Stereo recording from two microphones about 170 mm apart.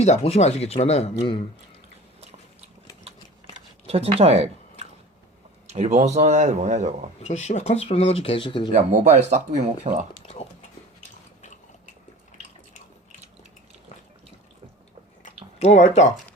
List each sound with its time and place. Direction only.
0.0 s speech: 40° left (ahead or behind)
3.8 s speech: 35° right (ahead or behind)
7.2 s speech: 40° left (ahead or behind)
8.7 s speech: 50° right (ahead or behind)
15.5 s speech: 40° left (ahead or behind)